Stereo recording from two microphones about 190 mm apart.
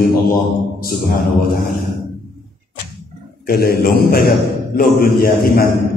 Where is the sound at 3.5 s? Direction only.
50° left (ahead or behind).